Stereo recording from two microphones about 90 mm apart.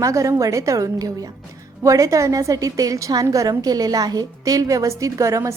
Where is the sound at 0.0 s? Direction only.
35° right (ahead or behind).